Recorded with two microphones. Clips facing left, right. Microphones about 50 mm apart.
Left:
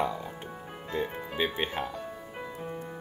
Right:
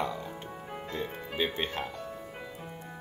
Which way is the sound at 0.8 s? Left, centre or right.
Centre.